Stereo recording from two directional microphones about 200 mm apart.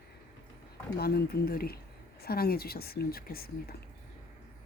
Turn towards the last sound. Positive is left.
turn(degrees=50)  # may be behind; listen again after turning